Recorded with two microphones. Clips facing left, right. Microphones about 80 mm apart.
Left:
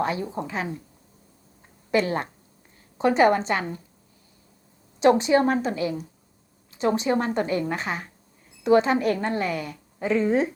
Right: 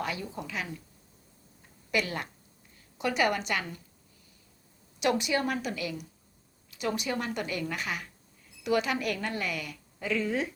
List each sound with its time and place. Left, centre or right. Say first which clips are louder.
0.0 s a woman's voice: left 8 dB; left
1.9 s a woman's voice: left 8 dB; left
4.9 s a woman's voice: left 10 dB; left